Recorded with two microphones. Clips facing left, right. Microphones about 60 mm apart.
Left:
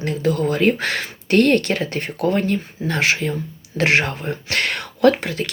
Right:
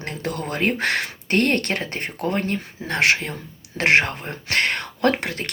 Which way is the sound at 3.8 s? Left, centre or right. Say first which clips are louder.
Even; right.